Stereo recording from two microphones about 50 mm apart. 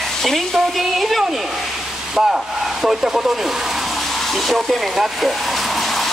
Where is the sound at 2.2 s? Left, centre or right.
Centre.